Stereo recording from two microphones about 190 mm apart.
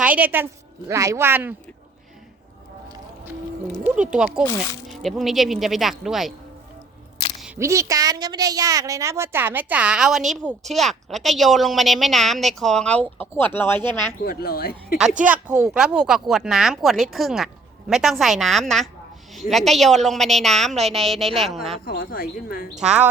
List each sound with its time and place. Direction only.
0.0 s a woman's voice: 10° right (ahead or behind)
3.8 s speech: 5° right (ahead or behind)
4.4 s speech: 15° left (ahead or behind)
5.0 s speech: centre (ahead or behind)
7.4 s a woman's voice: 10° right (ahead or behind); by 14.1 s 10° left (ahead or behind)
14.3 s speech: 50° left (ahead or behind)
15.2 s speech: 5° right (ahead or behind)
21.8 s speech: 50° left (ahead or behind)
22.7 s a woman's voice: 35° right (ahead or behind)